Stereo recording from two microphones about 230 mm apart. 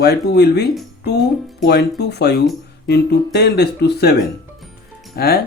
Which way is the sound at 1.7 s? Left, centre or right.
Left.